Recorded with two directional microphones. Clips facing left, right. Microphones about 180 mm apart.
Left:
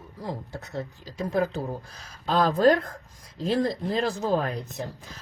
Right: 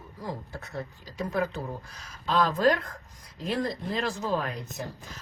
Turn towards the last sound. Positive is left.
turn(degrees=35)  # may be behind; listen again after turning